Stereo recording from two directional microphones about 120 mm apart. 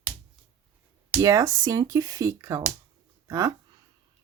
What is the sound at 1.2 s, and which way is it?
Speech, 30° right (ahead or behind).